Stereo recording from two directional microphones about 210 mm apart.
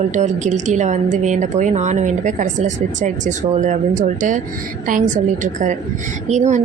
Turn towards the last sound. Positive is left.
turn(degrees=-35)  # may be behind; listen again after turning